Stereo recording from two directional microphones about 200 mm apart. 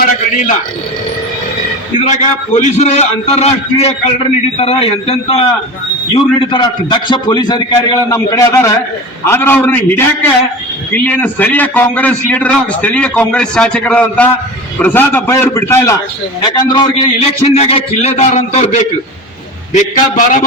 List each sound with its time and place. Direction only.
2.0 s a man's voice: 35° left (ahead or behind)